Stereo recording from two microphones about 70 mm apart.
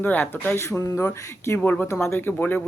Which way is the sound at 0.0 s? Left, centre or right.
Left.